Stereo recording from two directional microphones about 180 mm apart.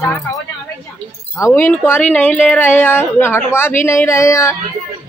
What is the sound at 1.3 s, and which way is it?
Speech, 15° left (ahead or behind).